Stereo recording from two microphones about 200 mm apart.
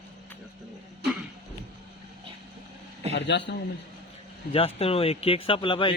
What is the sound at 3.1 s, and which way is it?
Speech, 60° left (ahead or behind).